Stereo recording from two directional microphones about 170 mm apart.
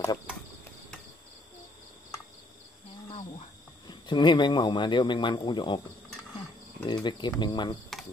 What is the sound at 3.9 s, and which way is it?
Speech, 25° left (ahead or behind).